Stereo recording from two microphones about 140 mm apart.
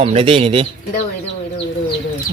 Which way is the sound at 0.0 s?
40° right (ahead or behind).